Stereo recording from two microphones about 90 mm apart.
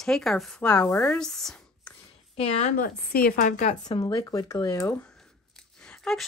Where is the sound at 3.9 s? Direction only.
50° left (ahead or behind).